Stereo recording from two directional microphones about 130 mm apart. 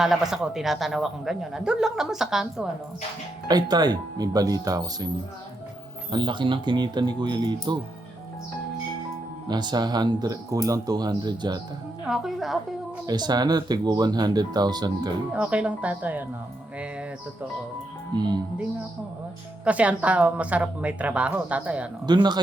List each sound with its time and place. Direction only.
0.0 s a man's voice: 5° right (ahead or behind)
3.5 s speech: 30° right (ahead or behind)
6.1 s speech: 35° right (ahead or behind)
9.5 s speech: 35° right (ahead or behind)
12.0 s a man's voice: centre (ahead or behind)
13.1 s speech: 30° right (ahead or behind)
15.3 s a woman's voice: 10° right (ahead or behind)
16.7 s music: 10° right (ahead or behind)
18.2 s speech: 30° right (ahead or behind)
19.6 s a woman's voice: 10° right (ahead or behind)
22.0 s speech: 35° right (ahead or behind)